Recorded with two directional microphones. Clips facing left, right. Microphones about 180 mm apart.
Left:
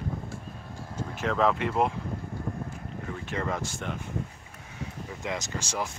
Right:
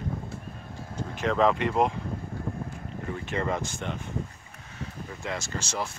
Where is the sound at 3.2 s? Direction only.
Centre (ahead or behind).